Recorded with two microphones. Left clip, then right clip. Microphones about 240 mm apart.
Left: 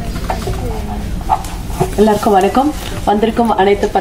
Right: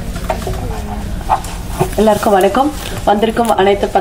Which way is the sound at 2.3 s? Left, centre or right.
Right.